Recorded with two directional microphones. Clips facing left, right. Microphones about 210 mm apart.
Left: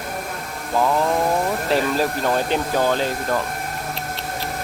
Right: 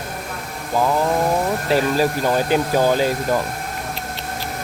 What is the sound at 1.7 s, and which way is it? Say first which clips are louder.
Speech: right 3 dB; 5° right (ahead or behind).